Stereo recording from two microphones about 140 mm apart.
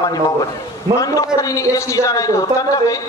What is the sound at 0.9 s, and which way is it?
A man's voice, 25° left (ahead or behind).